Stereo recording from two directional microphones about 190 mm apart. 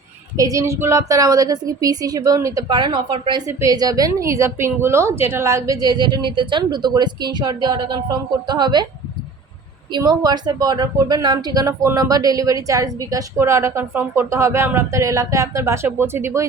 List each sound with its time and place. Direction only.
0.3 s a woman's voice: 15° right (ahead or behind)
9.9 s a woman's voice: 20° right (ahead or behind)